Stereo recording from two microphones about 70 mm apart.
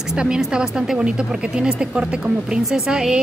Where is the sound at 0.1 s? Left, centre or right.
Centre.